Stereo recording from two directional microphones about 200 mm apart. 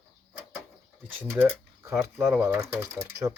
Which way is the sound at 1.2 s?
10° right (ahead or behind).